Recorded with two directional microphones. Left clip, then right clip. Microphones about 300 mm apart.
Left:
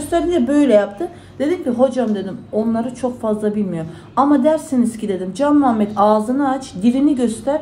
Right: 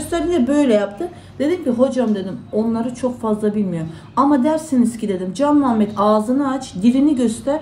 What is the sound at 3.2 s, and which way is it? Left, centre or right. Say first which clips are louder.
A woman's voice: left 1 dB; centre.